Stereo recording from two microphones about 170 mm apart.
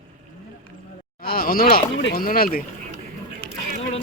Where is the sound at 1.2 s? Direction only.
60° left (ahead or behind).